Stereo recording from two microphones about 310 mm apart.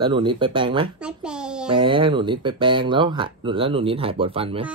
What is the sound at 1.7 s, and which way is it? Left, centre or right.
Speech, centre.